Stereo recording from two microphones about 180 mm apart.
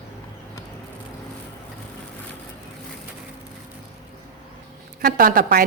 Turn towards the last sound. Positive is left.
turn(degrees=-55)  # may be behind; listen again after turning